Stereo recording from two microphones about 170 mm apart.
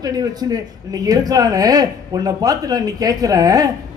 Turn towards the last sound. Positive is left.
turn(degrees=-20)  # may be behind; listen again after turning